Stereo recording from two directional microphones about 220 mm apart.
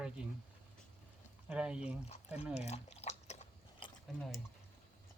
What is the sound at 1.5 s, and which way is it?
Speech, 5° right (ahead or behind).